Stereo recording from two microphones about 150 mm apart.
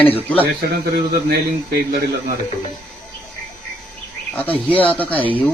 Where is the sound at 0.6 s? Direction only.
90° right.